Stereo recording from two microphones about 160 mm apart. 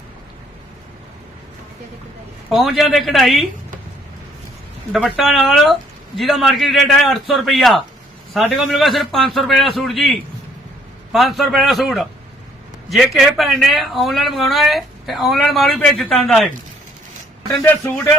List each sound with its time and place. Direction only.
2.5 s speech: centre (ahead or behind)
4.9 s speech: centre (ahead or behind)
17.6 s speech: 10° left (ahead or behind)